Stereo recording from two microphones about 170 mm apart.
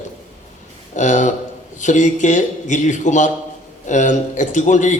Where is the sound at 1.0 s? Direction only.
45° left (ahead or behind).